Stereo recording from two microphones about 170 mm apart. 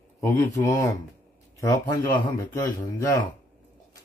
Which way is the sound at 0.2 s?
15° left (ahead or behind).